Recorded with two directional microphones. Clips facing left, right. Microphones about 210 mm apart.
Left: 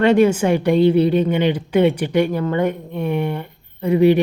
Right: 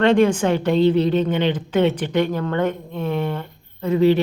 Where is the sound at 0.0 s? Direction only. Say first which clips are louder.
Left 2 dB; 10° left (ahead or behind).